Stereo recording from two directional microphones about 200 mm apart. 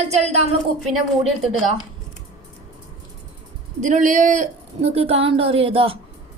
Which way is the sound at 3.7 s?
40° right (ahead or behind).